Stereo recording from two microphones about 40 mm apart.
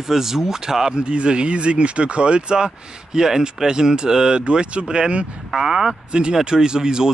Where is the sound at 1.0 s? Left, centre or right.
Right.